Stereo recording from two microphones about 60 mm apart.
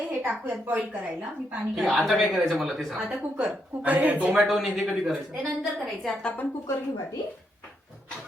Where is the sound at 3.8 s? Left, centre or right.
Right.